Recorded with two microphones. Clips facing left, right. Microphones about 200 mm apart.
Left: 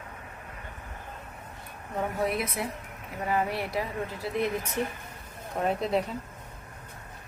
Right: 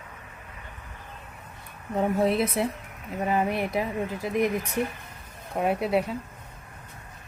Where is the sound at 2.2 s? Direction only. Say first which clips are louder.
Right 6 dB; 30° right (ahead or behind); by 6.1 s 10° right (ahead or behind).